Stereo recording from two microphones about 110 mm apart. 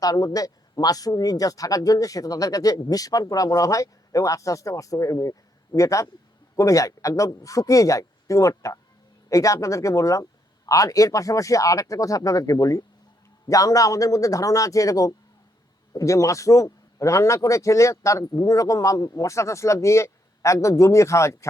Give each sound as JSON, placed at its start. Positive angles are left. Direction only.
{"t": 0.0, "sound": "a man's voice", "side_deg": 35}